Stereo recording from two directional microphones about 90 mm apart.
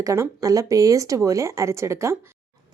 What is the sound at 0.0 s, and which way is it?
Speech, 35° right (ahead or behind).